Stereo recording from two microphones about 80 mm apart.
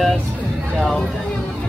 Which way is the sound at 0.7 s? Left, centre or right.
Centre.